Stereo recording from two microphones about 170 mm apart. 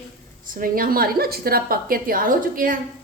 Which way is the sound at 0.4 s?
55° right (ahead or behind).